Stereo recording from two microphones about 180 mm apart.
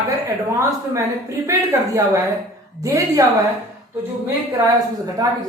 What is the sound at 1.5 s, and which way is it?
A woman's voice, 15° right (ahead or behind).